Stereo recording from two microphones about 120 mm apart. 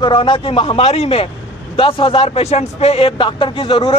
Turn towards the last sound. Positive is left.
turn(degrees=50)  # may be behind; listen again after turning